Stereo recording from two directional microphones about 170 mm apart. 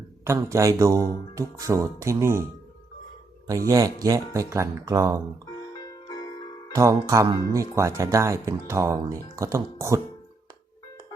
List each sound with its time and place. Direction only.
0.3 s speech: 15° right (ahead or behind)
3.7 s speech: 20° right (ahead or behind)
7.1 s speech: 20° right (ahead or behind)